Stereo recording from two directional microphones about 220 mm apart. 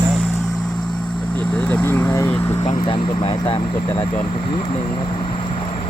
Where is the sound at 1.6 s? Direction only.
10° left (ahead or behind).